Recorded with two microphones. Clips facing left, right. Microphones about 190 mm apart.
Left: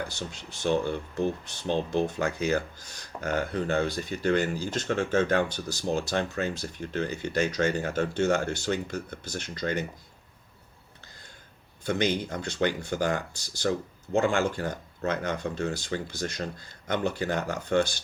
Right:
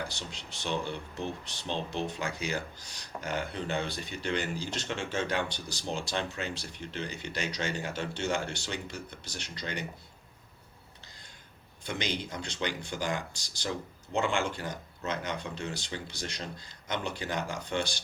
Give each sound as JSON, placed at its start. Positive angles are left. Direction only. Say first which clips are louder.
{"t": 0.2, "sound": "speech", "louder": "left 7 dB", "side_deg": 45}
{"t": 11.9, "sound": "speech", "louder": "left 8 dB", "side_deg": 50}